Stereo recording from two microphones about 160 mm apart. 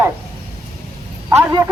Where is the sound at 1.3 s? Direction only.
20° right (ahead or behind).